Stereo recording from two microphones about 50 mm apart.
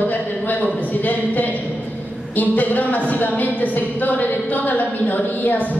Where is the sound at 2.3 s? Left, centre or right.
Left.